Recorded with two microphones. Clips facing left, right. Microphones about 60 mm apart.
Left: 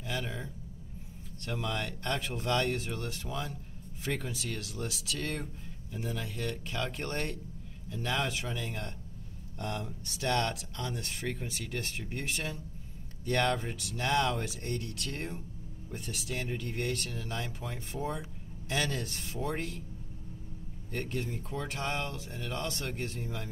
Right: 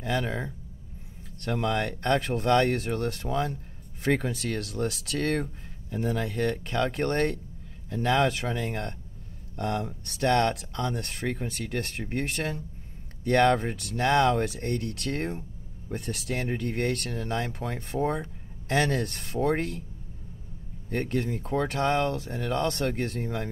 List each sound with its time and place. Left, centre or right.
0.0 s speech: right
20.9 s speech: right